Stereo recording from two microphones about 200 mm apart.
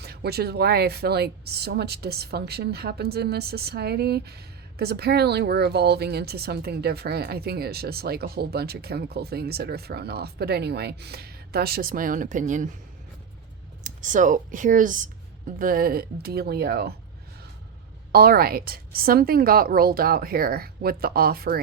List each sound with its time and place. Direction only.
0.0 s speech: 50° right (ahead or behind)
13.8 s speech: 40° right (ahead or behind)
18.1 s speech: 50° right (ahead or behind)